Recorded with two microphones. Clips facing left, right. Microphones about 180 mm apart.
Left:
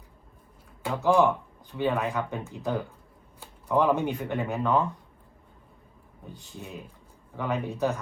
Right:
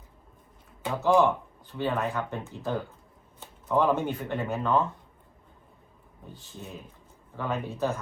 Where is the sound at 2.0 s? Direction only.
15° left (ahead or behind).